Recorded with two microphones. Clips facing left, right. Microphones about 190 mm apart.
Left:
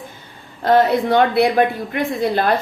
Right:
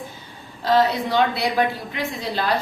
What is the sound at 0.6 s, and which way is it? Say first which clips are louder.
A woman's voice: left 4 dB; 55° left (ahead or behind).